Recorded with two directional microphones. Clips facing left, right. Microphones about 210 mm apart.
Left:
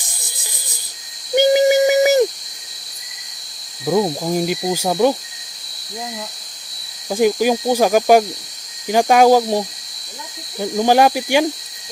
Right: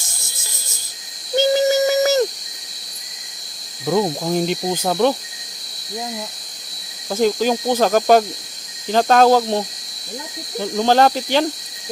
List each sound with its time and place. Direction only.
0.0 s a sound: 15° left (ahead or behind)
3.8 s cricket: 5° left (ahead or behind)
7.1 s cricket: 10° left (ahead or behind)